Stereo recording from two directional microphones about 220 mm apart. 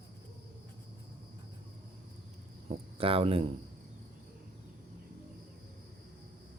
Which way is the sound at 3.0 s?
25° right (ahead or behind).